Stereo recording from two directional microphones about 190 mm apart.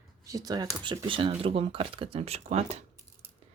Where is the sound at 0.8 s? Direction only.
25° right (ahead or behind).